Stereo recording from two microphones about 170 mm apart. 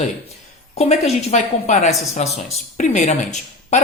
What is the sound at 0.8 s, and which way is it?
A woman's voice, 40° left (ahead or behind).